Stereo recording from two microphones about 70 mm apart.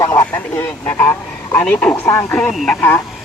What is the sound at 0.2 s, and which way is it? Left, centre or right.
Speech, left.